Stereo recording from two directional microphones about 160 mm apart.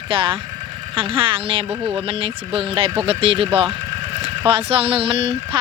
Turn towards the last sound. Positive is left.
turn(degrees=-35)  # may be behind; listen again after turning